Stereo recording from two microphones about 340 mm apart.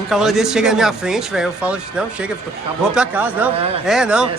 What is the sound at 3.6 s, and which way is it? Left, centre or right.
Speech, centre.